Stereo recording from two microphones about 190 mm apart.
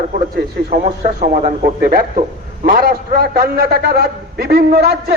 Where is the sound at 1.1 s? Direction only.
40° right (ahead or behind).